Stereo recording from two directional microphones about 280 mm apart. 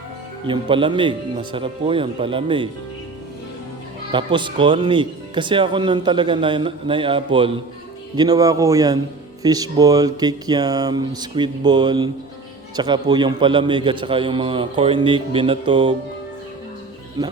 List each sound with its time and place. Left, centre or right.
0.4 s speech: centre
4.1 s speech: centre